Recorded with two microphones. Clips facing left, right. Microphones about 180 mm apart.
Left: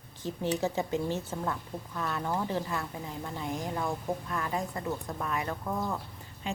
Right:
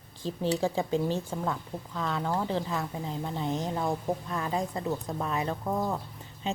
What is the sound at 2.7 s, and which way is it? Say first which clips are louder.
A woman's voice: right 3 dB; 20° right (ahead or behind).